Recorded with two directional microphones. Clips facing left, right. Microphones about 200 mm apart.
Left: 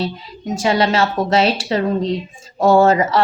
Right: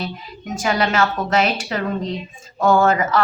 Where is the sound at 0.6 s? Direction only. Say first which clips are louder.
Left 3 dB; 30° left (ahead or behind).